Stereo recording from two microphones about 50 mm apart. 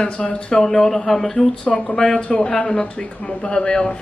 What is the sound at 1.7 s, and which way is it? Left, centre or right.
Speech, left.